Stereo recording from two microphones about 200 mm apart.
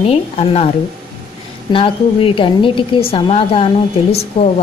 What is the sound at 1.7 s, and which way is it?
A woman's voice, 25° left (ahead or behind).